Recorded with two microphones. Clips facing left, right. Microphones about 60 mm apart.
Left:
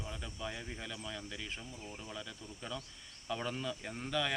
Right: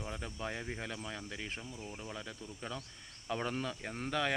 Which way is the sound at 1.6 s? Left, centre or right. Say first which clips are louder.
Right 2 dB; centre.